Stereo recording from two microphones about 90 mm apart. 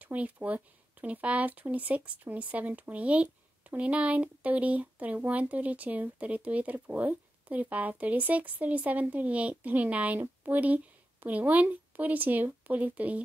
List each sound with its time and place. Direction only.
0.0 s speech: 15° right (ahead or behind)